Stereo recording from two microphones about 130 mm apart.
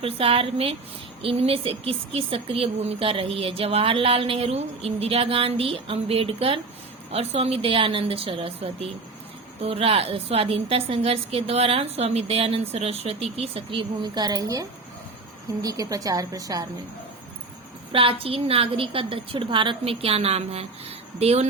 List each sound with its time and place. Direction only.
0.0 s a woman's voice: 45° right (ahead or behind); by 16.6 s 25° right (ahead or behind)
17.9 s speech: 45° right (ahead or behind)